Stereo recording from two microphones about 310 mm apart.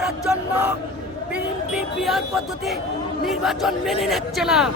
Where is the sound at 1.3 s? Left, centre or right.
Centre.